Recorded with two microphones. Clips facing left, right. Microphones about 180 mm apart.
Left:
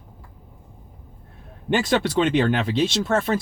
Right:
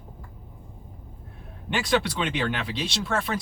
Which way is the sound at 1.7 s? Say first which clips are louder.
Left 5 dB; 45° left (ahead or behind).